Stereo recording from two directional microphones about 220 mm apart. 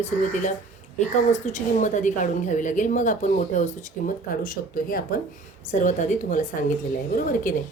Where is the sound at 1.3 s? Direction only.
30° left (ahead or behind).